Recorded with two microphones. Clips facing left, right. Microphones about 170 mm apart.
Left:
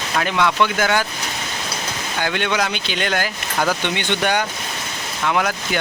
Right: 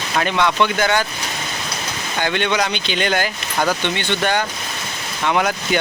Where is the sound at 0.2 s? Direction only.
5° left (ahead or behind).